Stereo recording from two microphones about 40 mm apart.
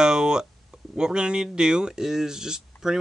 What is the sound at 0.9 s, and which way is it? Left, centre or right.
Speech, right.